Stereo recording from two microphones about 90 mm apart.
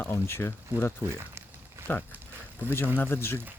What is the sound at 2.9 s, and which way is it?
Speech, 25° left (ahead or behind).